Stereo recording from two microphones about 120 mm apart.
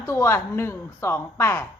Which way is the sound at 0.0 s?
20° left (ahead or behind).